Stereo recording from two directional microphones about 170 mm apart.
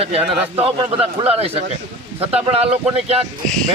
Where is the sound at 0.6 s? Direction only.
35° right (ahead or behind).